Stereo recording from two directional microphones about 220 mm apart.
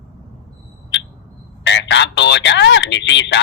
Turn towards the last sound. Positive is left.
turn(degrees=55)  # may be behind; listen again after turning